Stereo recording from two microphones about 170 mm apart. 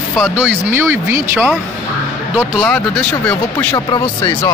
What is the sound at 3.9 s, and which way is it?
Speech, 20° left (ahead or behind).